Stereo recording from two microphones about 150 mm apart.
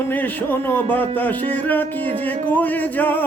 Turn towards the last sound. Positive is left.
turn(degrees=10)  # may be behind; listen again after turning